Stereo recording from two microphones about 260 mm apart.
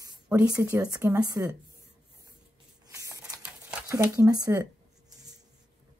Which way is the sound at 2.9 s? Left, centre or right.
Centre.